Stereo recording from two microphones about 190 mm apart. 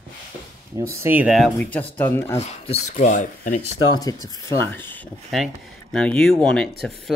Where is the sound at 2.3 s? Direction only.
35° left (ahead or behind).